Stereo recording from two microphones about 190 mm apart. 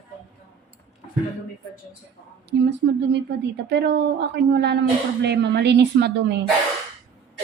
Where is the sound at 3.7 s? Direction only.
60° right (ahead or behind).